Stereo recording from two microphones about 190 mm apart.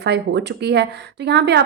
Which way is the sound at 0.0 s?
60° right (ahead or behind).